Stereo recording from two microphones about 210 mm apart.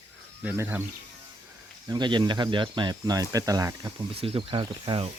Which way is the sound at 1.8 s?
20° right (ahead or behind).